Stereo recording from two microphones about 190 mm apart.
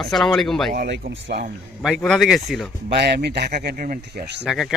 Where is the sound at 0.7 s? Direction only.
60° right (ahead or behind).